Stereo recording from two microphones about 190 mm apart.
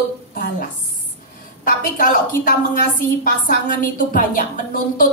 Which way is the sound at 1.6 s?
45° left (ahead or behind).